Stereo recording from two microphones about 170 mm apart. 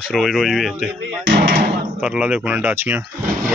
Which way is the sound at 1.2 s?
90° right.